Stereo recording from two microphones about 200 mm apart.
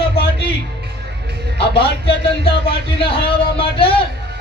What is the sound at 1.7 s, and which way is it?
A man's voice, 25° left (ahead or behind).